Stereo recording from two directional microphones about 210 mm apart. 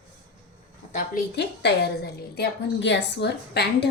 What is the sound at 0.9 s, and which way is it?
A woman's voice, 45° left (ahead or behind).